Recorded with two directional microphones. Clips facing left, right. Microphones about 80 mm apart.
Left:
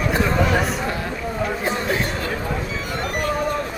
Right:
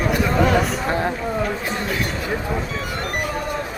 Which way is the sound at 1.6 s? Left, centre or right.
Left.